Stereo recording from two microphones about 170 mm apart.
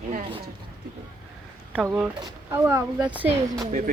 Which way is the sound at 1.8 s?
10° right (ahead or behind).